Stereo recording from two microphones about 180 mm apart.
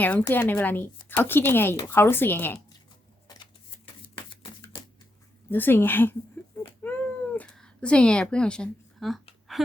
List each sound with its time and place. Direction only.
0.0 s speech: 10° left (ahead or behind)
3.2 s typewriter: 25° left (ahead or behind)
5.5 s speech: 10° left (ahead or behind)
6.6 s cat: 10° left (ahead or behind)